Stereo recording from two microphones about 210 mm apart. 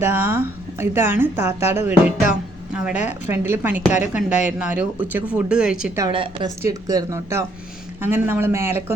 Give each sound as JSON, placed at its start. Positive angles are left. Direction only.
{"t": 0.0, "sound": "a woman's voice", "side_deg": -10}
{"t": 6.0, "sound": "a woman's voice", "side_deg": -20}